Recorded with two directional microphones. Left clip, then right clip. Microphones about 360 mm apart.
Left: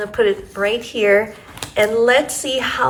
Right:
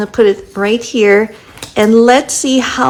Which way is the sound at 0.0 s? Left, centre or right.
Centre.